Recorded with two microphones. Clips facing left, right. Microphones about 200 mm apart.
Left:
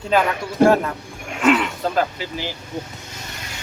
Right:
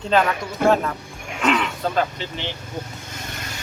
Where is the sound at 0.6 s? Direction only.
35° left (ahead or behind).